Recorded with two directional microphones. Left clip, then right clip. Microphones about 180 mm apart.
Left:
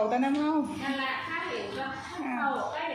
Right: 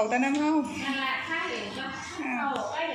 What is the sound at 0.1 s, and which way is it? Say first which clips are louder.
Speech: right 1 dB; centre (ahead or behind).